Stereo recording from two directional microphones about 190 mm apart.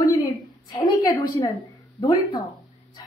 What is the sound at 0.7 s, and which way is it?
Speech, 20° left (ahead or behind).